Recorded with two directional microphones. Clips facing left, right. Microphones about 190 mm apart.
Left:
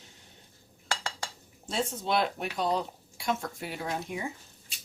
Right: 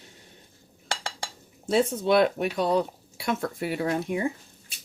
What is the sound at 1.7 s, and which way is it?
Speech, 60° right (ahead or behind).